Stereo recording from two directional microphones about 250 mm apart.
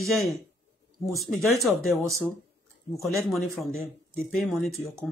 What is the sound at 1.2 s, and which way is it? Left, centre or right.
Speech, centre.